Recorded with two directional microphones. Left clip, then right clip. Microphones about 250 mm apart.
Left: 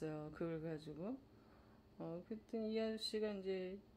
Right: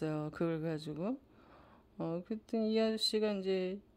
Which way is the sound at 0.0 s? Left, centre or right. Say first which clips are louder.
Right 9 dB; right.